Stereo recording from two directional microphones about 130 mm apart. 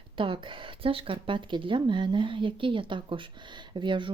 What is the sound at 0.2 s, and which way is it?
Speech, 40° right (ahead or behind).